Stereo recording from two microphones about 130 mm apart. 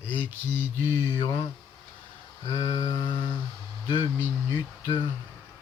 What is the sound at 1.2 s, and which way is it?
Humming, 40° left (ahead or behind).